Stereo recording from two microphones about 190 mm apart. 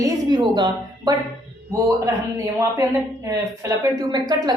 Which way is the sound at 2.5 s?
15° right (ahead or behind).